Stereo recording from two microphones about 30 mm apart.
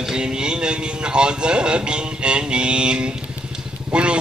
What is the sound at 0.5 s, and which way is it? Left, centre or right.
Speech, right.